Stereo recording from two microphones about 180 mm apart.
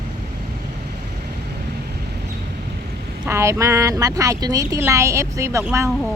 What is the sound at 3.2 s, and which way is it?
Speech, 15° right (ahead or behind).